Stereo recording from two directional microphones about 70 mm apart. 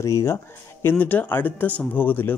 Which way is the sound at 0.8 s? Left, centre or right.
Left.